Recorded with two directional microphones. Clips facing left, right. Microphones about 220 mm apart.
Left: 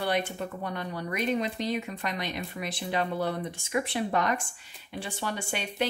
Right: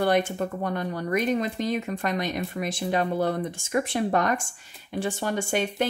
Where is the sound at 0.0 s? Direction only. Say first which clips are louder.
Right 6 dB; 45° right (ahead or behind).